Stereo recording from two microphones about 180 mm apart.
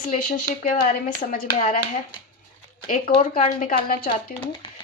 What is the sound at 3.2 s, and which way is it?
Speech, 40° left (ahead or behind).